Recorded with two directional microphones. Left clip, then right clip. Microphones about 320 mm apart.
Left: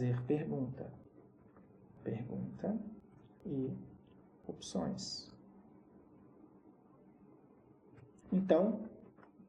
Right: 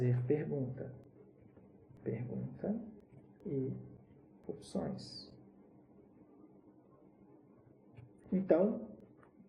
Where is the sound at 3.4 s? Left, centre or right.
Left.